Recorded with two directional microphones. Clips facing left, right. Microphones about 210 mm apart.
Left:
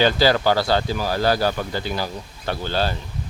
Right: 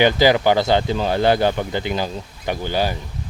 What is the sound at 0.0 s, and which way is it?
A man's voice, 15° right (ahead or behind).